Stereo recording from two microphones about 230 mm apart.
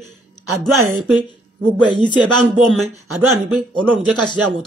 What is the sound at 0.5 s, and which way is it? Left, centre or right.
Speech, centre.